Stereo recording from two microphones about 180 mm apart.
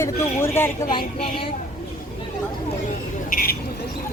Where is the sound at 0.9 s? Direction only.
30° left (ahead or behind).